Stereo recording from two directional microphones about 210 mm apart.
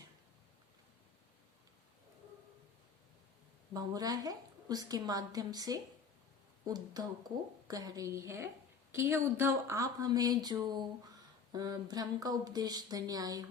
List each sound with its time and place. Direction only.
3.8 s a woman's voice: 20° right (ahead or behind)